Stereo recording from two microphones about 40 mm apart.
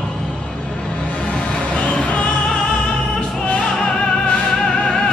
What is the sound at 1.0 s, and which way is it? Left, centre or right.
Music, left.